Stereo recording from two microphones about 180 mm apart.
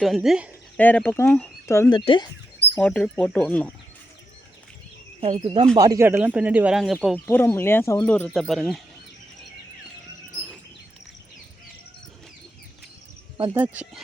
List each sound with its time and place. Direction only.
0.0 s speech: centre (ahead or behind)
0.8 s speech: 10° left (ahead or behind)
2.0 s speech: 25° left (ahead or behind)
2.7 s speech: 5° left (ahead or behind)
5.2 s speech: 30° right (ahead or behind); by 7.2 s centre (ahead or behind)
7.3 s speech: 10° left (ahead or behind)
8.1 s speech: 5° left (ahead or behind)
13.3 s speech: 25° right (ahead or behind)
13.6 s speech: 5° right (ahead or behind)